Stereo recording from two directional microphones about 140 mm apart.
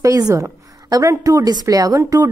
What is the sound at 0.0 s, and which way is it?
A woman's voice, 25° right (ahead or behind).